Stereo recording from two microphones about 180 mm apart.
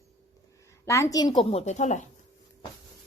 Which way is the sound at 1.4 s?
35° left (ahead or behind).